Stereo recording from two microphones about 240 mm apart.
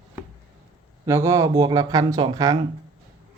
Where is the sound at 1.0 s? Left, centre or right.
Centre.